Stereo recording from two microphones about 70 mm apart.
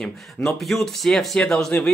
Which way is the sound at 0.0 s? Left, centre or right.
Centre.